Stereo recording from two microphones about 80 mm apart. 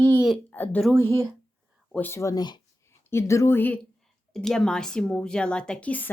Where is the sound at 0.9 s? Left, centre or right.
Right.